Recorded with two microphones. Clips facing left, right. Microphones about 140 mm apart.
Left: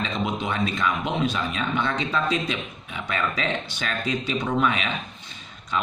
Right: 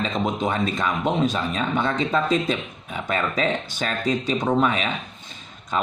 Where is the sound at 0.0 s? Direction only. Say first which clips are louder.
Right 3 dB; 40° right (ahead or behind).